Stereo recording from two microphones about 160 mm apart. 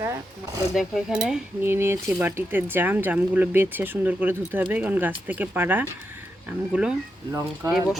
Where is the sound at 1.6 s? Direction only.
15° right (ahead or behind).